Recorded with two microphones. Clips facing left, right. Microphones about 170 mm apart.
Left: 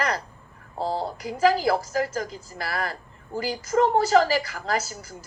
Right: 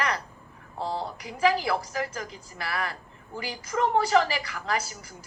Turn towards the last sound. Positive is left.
turn(degrees=40)  # may be behind; listen again after turning